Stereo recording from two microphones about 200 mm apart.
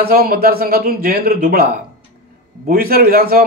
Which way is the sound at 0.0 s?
50° right (ahead or behind).